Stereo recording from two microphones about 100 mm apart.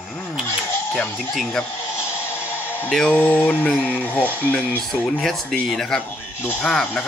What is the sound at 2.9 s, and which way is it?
Speech, 5° left (ahead or behind).